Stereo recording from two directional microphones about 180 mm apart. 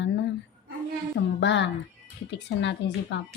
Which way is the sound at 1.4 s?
85° left.